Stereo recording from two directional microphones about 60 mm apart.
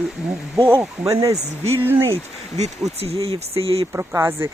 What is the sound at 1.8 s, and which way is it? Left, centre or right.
Speech, right.